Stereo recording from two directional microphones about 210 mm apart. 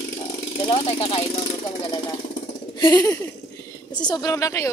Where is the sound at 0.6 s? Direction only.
25° left (ahead or behind).